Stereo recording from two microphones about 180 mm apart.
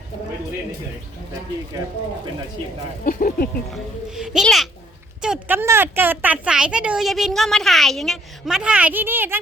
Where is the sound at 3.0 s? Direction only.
50° left (ahead or behind).